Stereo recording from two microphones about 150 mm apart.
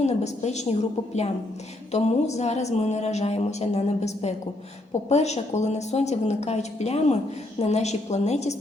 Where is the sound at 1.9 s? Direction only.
50° left (ahead or behind).